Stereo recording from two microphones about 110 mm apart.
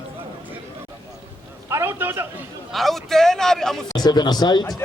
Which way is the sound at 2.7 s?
Centre (ahead or behind).